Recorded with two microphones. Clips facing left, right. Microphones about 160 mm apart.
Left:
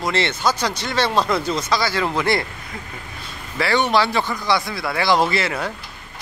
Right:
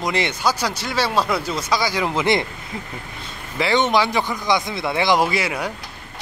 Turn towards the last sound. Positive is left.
turn(degrees=-10)  # may be behind; listen again after turning